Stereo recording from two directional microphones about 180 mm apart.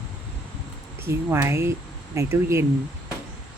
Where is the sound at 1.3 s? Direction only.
15° right (ahead or behind).